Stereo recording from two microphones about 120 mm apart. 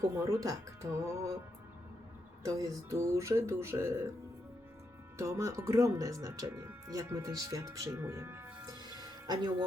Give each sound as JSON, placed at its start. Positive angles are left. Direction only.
{"t": 0.3, "sound": "speech", "side_deg": -30}
{"t": 2.4, "sound": "speech", "side_deg": -25}
{"t": 5.1, "sound": "speech", "side_deg": -25}
{"t": 8.8, "sound": "music", "side_deg": -35}